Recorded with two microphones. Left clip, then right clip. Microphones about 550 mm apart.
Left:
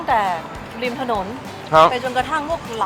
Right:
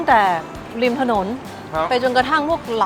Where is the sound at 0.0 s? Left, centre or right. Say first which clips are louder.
Right 4 dB; right.